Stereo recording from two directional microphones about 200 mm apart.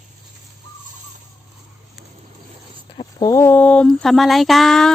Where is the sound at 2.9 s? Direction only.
15° left (ahead or behind).